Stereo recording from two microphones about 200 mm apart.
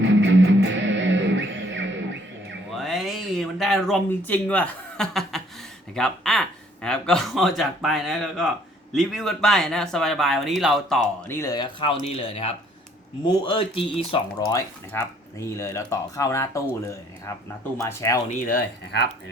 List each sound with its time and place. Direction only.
0.0 s music: 65° right (ahead or behind)
2.6 s a sound: centre (ahead or behind)
5.9 s speech: centre (ahead or behind)
11.3 s speech: 15° left (ahead or behind)
14.9 s speech: 15° left (ahead or behind)
18.3 s speech: 45° left (ahead or behind)